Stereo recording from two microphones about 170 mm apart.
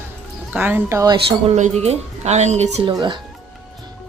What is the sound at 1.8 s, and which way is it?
Speech, 40° right (ahead or behind).